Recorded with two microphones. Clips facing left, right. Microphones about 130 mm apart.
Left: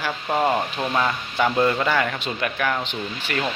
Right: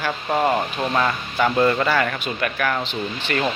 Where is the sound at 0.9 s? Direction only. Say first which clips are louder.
Right 1 dB; 5° left (ahead or behind).